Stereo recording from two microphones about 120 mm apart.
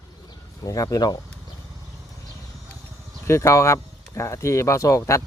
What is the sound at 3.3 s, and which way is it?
Speech, 25° left (ahead or behind).